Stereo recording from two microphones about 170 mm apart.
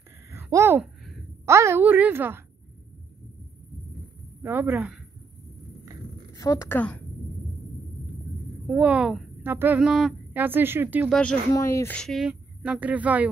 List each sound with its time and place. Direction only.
0.3 s a sound: 15° right (ahead or behind)
1.4 s a woman's voice: 15° right (ahead or behind)
4.4 s a woman's voice: 10° right (ahead or behind)
6.3 s a woman's voice: 20° left (ahead or behind)
8.6 s a woman's voice: 5° right (ahead or behind)
11.5 s speech: 15° left (ahead or behind)
12.0 s a woman's voice: centre (ahead or behind)